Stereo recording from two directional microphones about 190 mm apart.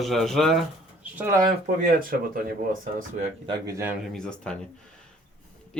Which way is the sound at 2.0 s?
50° right (ahead or behind).